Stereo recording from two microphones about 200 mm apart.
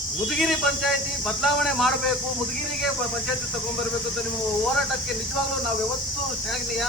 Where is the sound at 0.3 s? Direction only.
Centre (ahead or behind).